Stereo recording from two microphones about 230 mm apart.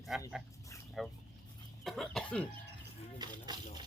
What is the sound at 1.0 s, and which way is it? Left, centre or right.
Speech, centre.